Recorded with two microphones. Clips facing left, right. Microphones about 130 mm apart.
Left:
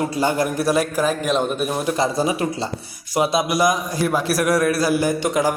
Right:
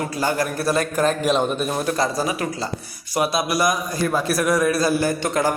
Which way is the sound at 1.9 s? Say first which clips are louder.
Left 2 dB; 25° left (ahead or behind).